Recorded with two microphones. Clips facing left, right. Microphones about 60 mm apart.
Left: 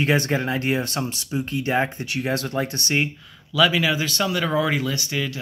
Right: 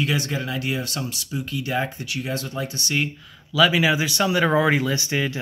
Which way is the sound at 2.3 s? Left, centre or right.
Left.